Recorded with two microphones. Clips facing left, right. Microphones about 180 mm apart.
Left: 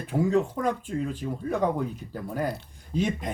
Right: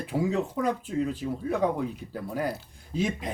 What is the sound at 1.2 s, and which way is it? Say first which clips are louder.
A man's voice: even; 5° right (ahead or behind).